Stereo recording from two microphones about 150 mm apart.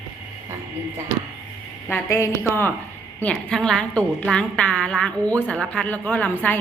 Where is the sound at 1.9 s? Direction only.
20° left (ahead or behind).